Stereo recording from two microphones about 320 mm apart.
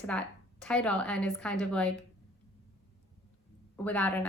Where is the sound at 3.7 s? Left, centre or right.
Centre.